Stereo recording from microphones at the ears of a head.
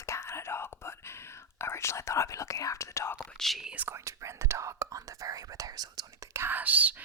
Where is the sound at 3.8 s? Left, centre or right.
Right.